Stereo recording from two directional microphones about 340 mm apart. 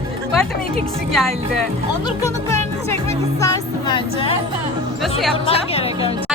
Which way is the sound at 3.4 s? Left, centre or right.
Centre.